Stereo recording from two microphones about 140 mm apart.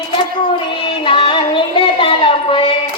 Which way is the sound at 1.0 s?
40° left (ahead or behind).